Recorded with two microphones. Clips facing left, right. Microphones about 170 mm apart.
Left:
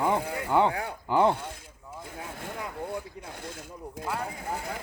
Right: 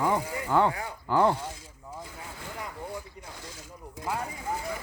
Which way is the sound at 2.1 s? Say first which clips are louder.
Left 3 dB; 55° left (ahead or behind).